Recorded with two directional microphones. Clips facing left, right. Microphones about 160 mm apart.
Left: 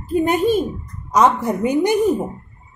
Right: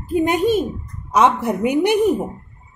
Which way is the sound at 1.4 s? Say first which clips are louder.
Even; 15° right (ahead or behind).